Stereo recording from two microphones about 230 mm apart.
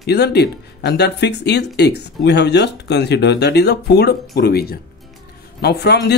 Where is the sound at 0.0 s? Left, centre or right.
Left.